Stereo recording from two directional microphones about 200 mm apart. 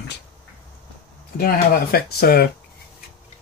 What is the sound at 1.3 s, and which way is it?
Speech, 45° left (ahead or behind).